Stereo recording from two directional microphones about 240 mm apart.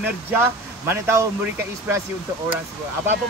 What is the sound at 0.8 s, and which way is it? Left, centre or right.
Speech, centre.